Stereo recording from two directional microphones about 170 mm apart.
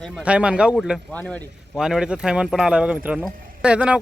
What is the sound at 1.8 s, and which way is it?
Speech, 5° right (ahead or behind).